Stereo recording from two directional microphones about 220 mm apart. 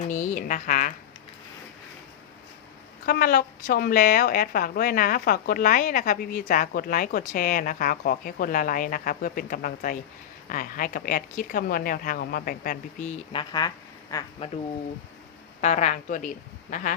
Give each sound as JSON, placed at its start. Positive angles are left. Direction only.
{"t": 0.1, "sound": "a woman's voice", "side_deg": 35}
{"t": 3.1, "sound": "a woman's voice", "side_deg": 40}
{"t": 13.3, "sound": "speech", "side_deg": 20}
{"t": 15.6, "sound": "a woman's voice", "side_deg": 30}